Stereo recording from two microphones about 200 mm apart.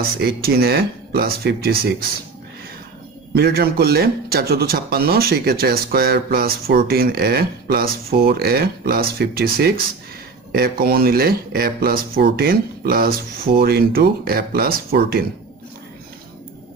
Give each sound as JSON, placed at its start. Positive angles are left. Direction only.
{"t": 0.2, "sound": "a man's voice", "side_deg": -50}
{"t": 3.3, "sound": "a man's voice", "side_deg": -50}